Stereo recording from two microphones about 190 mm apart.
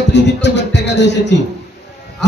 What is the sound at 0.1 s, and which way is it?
Speech, 65° left (ahead or behind).